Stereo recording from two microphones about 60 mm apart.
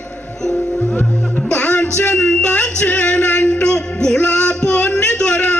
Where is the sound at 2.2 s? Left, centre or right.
Centre.